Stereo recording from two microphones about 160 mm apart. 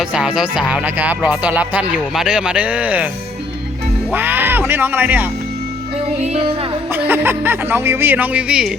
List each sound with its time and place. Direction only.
0.0 s music: 5° right (ahead or behind)
4.1 s music: 10° right (ahead or behind)
6.2 s music: 40° right (ahead or behind)
6.9 s music: 15° right (ahead or behind)